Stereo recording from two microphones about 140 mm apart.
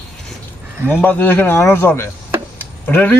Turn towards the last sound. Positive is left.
turn(degrees=15)  # may be behind; listen again after turning